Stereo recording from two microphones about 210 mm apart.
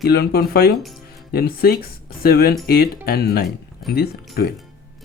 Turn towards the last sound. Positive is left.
turn(degrees=50)  # may be behind; listen again after turning